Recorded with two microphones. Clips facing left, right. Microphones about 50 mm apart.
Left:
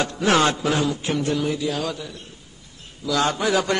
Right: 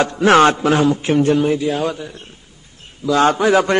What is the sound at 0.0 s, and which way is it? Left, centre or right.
A man's voice, right.